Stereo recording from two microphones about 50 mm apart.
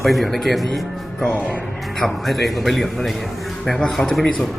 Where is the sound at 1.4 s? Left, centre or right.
Left.